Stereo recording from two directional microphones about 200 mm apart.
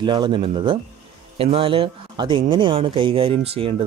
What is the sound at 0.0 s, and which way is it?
Speech, 20° right (ahead or behind).